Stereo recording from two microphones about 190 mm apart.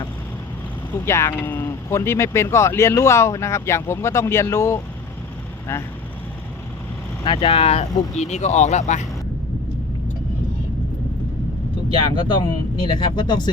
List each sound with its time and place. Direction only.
1.0 s speech: 15° left (ahead or behind)
7.3 s speech: 30° left (ahead or behind)
11.9 s speech: 25° left (ahead or behind)